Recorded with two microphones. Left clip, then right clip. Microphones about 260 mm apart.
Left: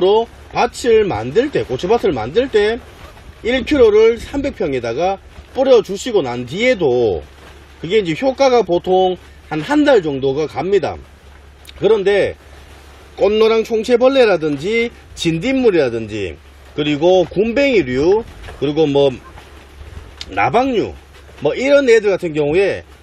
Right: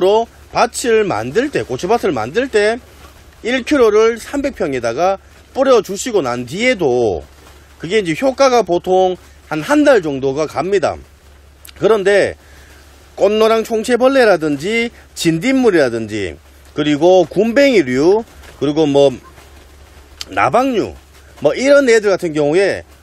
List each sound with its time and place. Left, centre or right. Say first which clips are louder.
0.0 s a man's voice: right 1 dB; centre
20.3 s a man's voice: right 1 dB; centre